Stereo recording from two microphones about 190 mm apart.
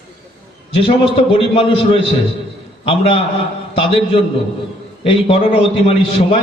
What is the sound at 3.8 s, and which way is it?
A man's voice, 30° left (ahead or behind).